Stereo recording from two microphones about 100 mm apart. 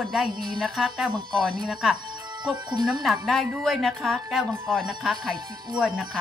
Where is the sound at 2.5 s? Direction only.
45° right (ahead or behind).